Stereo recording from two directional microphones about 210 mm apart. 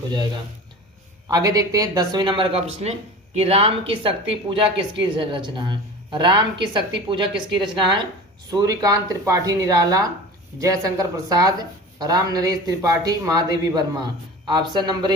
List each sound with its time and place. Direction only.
1.3 s a woman's voice: 15° right (ahead or behind)